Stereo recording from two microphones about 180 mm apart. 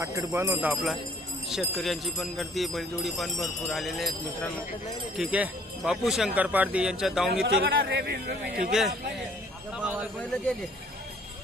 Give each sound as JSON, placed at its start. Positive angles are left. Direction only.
{"t": 0.0, "sound": "speech", "side_deg": -15}
{"t": 7.4, "sound": "speech", "side_deg": -65}
{"t": 9.8, "sound": "speech", "side_deg": -5}